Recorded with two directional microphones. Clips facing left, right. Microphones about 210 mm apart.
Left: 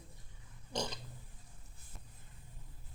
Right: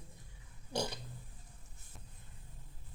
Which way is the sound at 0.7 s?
10° right (ahead or behind).